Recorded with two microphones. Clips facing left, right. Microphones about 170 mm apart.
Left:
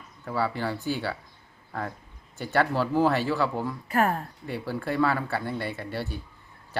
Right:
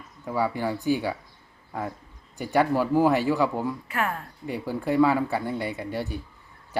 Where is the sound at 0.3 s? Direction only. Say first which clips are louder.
Right 2 dB; 15° right (ahead or behind).